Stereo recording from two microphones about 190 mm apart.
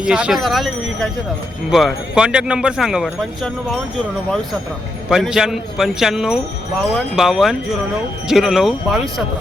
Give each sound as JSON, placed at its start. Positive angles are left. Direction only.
{"t": 0.0, "sound": "speech", "side_deg": -5}
{"t": 5.0, "sound": "speech", "side_deg": -5}